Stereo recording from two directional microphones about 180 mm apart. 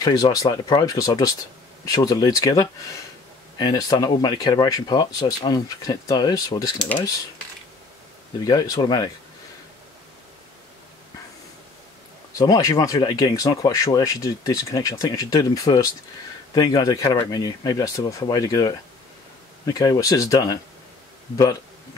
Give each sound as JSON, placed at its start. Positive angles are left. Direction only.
{"t": 0.0, "sound": "speech", "side_deg": 20}
{"t": 8.5, "sound": "speech", "side_deg": 20}
{"t": 12.4, "sound": "speech", "side_deg": 20}